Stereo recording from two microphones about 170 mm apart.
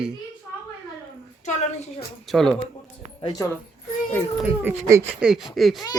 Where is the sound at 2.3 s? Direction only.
Centre (ahead or behind).